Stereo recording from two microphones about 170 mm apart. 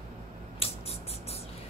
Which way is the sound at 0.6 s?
35° left (ahead or behind).